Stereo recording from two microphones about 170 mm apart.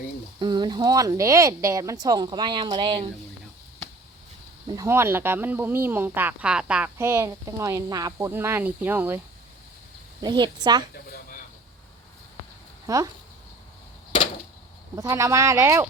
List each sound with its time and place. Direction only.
0.3 s speech: 25° right (ahead or behind)
4.6 s speech: 20° right (ahead or behind)
10.2 s speech: 25° right (ahead or behind)
10.9 s a sound: 60° left (ahead or behind)
12.9 s speech: 20° right (ahead or behind)
14.9 s speech: 20° right (ahead or behind)